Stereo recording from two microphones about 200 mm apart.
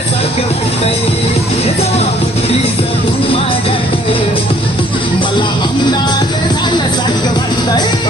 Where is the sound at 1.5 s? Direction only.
30° left (ahead or behind).